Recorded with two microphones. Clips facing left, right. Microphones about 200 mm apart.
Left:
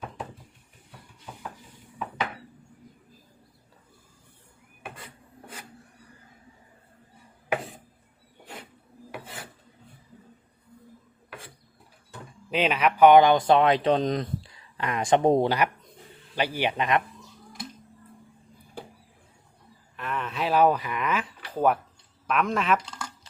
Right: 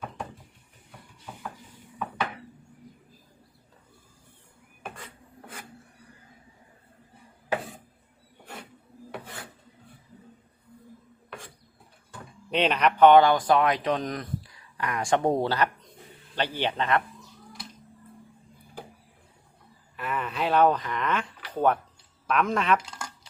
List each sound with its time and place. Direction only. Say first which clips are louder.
12.5 s speech: even; 5° left (ahead or behind)
20.0 s a sound: right 1 dB; 5° right (ahead or behind)
22.3 s speech: even; centre (ahead or behind)